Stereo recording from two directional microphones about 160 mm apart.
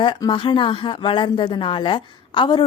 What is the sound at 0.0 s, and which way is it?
Speech, 30° left (ahead or behind).